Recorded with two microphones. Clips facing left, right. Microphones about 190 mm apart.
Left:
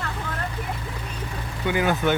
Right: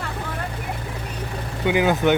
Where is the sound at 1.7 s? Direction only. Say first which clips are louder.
Right 4 dB; 15° right (ahead or behind).